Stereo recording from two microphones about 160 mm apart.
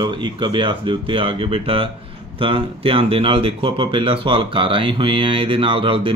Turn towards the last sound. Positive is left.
turn(degrees=-35)  # may be behind; listen again after turning